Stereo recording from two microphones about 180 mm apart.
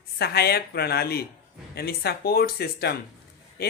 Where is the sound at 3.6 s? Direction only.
60° left (ahead or behind).